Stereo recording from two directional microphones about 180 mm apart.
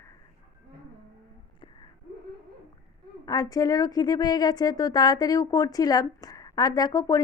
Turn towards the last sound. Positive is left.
turn(degrees=20)  # may be behind; listen again after turning